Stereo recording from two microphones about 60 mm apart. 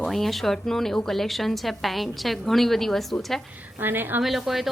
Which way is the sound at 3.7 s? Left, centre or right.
Right.